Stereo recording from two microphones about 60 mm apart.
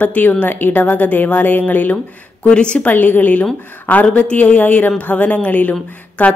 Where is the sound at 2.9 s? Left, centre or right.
Left.